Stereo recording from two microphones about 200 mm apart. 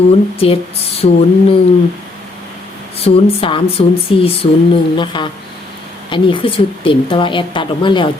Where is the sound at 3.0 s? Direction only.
30° left (ahead or behind).